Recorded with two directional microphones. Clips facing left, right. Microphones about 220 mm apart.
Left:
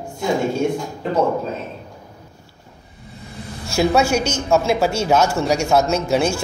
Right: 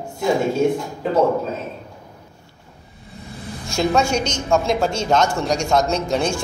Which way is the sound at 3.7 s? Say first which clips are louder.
Left 2 dB; 5° left (ahead or behind).